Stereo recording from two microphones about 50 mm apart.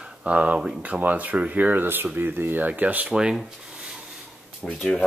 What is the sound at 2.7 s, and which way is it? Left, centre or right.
Speech, right.